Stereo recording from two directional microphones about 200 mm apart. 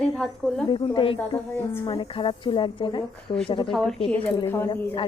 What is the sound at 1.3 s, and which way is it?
Speech, 15° left (ahead or behind).